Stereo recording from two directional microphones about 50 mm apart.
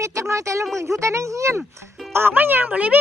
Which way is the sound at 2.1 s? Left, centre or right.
Right.